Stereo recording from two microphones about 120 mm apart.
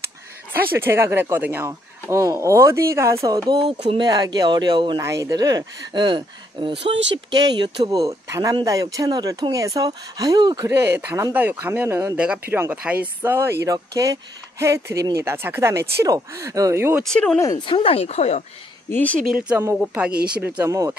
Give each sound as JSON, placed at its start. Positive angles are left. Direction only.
{"t": 0.5, "sound": "speech", "side_deg": -20}
{"t": 3.7, "sound": "speech", "side_deg": -65}
{"t": 4.0, "sound": "speech", "side_deg": -35}
{"t": 5.0, "sound": "speech", "side_deg": -25}
{"t": 10.6, "sound": "speech", "side_deg": -20}
{"t": 17.0, "sound": "speech", "side_deg": 5}
{"t": 17.6, "sound": "speech", "side_deg": 45}
{"t": 18.9, "sound": "speech", "side_deg": 15}
{"t": 19.8, "sound": "speech", "side_deg": -10}
{"t": 20.6, "sound": "speech", "side_deg": -25}